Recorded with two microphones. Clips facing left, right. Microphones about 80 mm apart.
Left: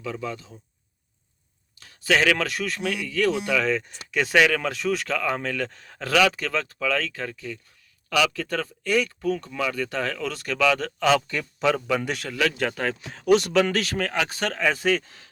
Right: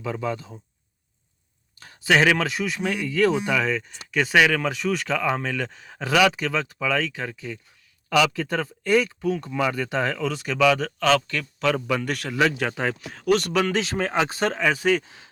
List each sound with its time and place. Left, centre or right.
0.0 s speech: right
2.0 s speech: centre
2.8 s speech: right
3.5 s speech: centre; by 8.7 s right
8.8 s speech: right
9.4 s speech: centre
10.2 s speech: centre
11.0 s speech: centre
11.7 s speech: centre
12.3 s speech: right
12.7 s speech: centre
13.1 s speech: centre
13.7 s speech: right
14.6 s speech: centre